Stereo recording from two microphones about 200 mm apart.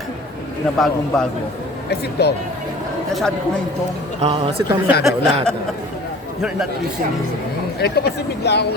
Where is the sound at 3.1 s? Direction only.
Centre (ahead or behind).